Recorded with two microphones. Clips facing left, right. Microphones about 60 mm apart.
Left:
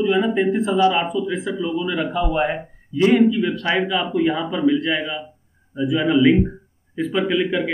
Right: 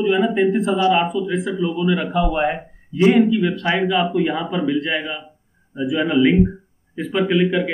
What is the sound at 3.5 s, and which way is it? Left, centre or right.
Speech, right.